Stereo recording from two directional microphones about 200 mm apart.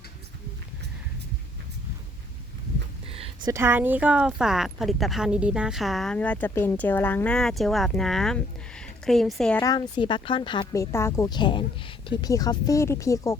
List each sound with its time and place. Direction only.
3.1 s a sound: 30° right (ahead or behind)
3.5 s speech: 10° right (ahead or behind)
9.6 s a woman's voice: 20° left (ahead or behind)